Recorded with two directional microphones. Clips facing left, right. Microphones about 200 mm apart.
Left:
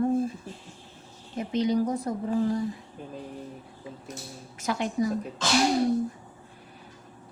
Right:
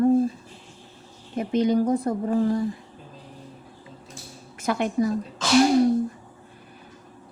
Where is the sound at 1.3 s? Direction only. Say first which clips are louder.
Right 4 dB; 55° right (ahead or behind).